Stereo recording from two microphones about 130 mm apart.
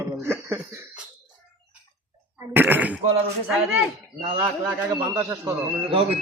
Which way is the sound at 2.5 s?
15° right (ahead or behind).